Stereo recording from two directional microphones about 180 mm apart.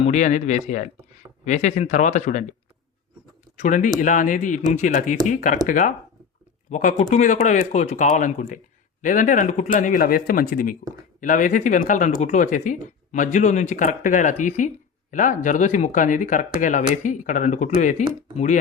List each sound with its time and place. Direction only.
0.0 s speech: 40° left (ahead or behind)
3.6 s speech: 45° left (ahead or behind)